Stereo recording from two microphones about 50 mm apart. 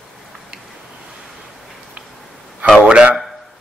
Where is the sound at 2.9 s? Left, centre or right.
Right.